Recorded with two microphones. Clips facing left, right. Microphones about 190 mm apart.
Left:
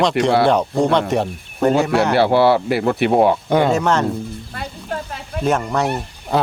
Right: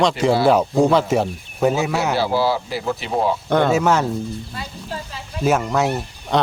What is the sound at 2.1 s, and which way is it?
Speech, 65° left (ahead or behind).